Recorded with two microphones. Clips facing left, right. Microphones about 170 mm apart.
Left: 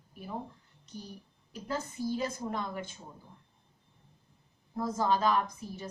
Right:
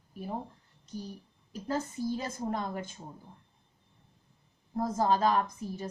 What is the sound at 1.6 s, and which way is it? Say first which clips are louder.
A woman's voice: right 2 dB; 40° right (ahead or behind).